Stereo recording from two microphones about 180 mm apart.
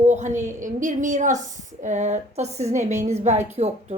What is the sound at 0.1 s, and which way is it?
A woman's voice, 40° right (ahead or behind).